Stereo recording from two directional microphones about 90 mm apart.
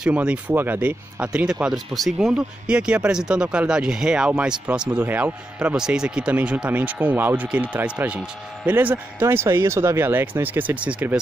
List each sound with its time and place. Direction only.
0.0 s speech: 10° right (ahead or behind)
5.8 s speech: 5° right (ahead or behind)